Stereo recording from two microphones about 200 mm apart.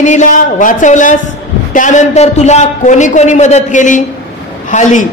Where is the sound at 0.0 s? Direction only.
35° left (ahead or behind).